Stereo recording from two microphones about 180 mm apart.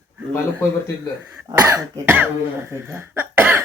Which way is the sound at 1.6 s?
20° right (ahead or behind).